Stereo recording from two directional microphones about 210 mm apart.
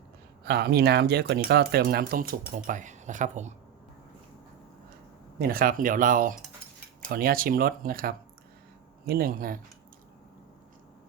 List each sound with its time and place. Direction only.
0.4 s speech: 50° right (ahead or behind)
5.4 s speech: 45° right (ahead or behind)